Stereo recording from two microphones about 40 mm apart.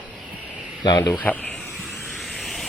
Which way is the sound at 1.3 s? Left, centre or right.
Left.